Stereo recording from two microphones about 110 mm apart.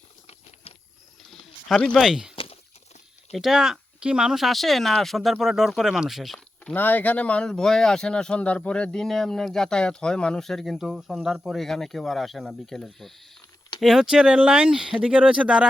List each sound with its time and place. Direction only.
1.3 s a sound: 5° left (ahead or behind)
2.0 s speech: 5° right (ahead or behind)
2.3 s walk: 55° left (ahead or behind)
3.3 s speech: 5° right (ahead or behind)
6.7 s speech: 15° left (ahead or behind); by 15.6 s 10° right (ahead or behind)